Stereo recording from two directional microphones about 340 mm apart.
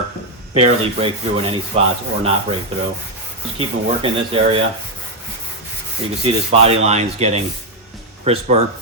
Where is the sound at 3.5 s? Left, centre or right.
Centre.